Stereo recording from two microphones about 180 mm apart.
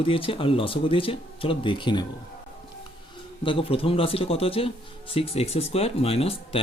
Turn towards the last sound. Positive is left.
turn(degrees=35)  # may be behind; listen again after turning